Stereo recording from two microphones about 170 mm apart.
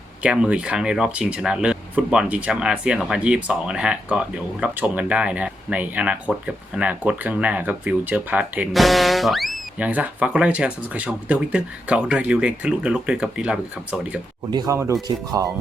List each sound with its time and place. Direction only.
0.2 s speech: 5° right (ahead or behind)
14.5 s speech: 25° right (ahead or behind)